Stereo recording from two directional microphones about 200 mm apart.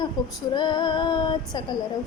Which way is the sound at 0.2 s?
20° left (ahead or behind).